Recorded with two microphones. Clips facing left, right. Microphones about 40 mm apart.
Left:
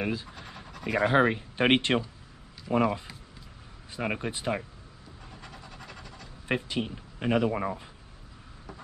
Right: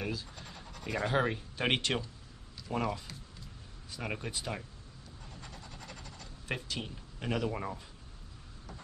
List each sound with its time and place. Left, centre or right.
0.0 s speech: left
0.4 s scratch: centre
0.9 s speech: left
5.4 s a sound: centre
6.4 s speech: left